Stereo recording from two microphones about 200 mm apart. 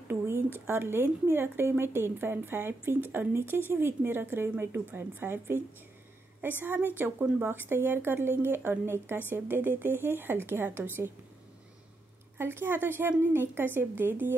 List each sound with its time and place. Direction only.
0.1 s speech: 10° right (ahead or behind)
12.4 s speech: 10° right (ahead or behind)